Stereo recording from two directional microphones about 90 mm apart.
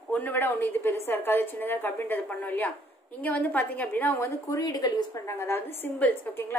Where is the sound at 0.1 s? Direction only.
20° left (ahead or behind).